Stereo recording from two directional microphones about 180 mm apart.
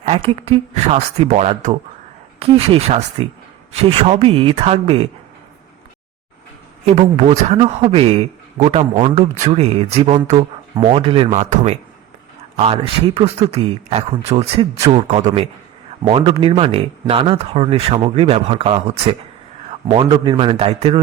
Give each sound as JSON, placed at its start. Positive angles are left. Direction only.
{"t": 0.0, "sound": "a man's voice", "side_deg": -35}
{"t": 6.8, "sound": "a man's voice", "side_deg": -35}